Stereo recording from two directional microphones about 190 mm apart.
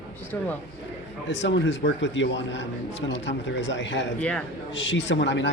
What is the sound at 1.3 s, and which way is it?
Speech, 70° left (ahead or behind).